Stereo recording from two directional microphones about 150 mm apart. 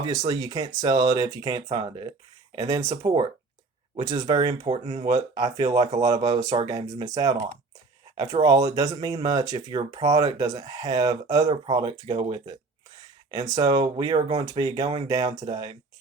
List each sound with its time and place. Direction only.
0.3 s speech: 25° right (ahead or behind)
3.1 s speech: 35° right (ahead or behind)
11.4 s speech: 35° right (ahead or behind)